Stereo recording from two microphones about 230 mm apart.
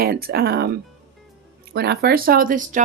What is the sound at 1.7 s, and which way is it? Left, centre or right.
Speech, right.